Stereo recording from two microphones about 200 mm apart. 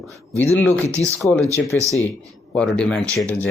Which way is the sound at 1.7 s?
15° right (ahead or behind).